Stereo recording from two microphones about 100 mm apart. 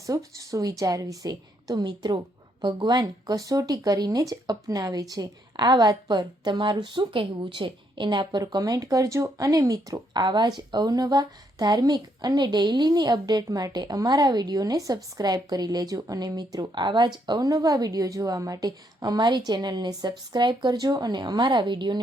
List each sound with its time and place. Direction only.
0.0 s a woman's voice: 35° right (ahead or behind); by 22.0 s 50° right (ahead or behind)